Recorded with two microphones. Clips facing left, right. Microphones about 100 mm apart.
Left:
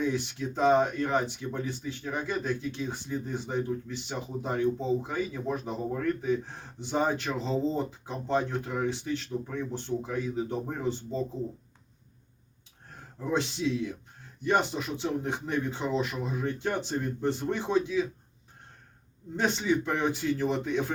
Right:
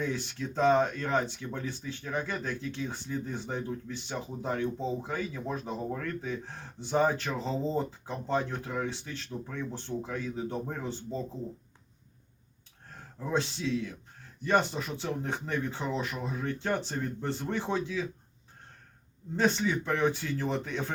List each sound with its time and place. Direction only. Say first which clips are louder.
0.0 s speech: left 4 dB; 15° left (ahead or behind)
6.7 s speech: right 1 dB; 15° left (ahead or behind)
13.3 s speech: left 2 dB; 15° left (ahead or behind)
19.4 s speech: left 1 dB; 20° left (ahead or behind)